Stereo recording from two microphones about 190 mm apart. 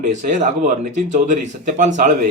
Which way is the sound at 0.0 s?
40° right (ahead or behind).